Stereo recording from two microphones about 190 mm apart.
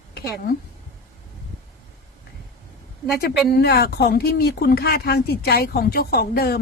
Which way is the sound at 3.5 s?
55° left (ahead or behind).